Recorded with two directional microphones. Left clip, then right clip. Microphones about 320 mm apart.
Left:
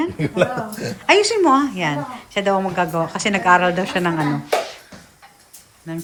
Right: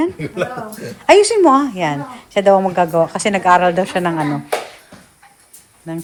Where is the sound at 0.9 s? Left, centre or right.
Centre.